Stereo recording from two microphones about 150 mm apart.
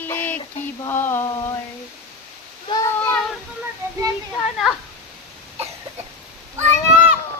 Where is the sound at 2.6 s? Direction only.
25° left (ahead or behind).